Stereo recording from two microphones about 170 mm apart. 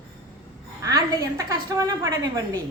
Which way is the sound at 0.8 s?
20° right (ahead or behind).